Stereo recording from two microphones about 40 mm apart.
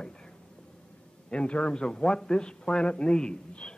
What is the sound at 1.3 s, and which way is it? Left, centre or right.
A man's voice, left.